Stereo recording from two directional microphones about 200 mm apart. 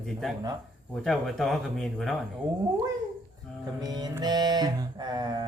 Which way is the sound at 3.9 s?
20° right (ahead or behind).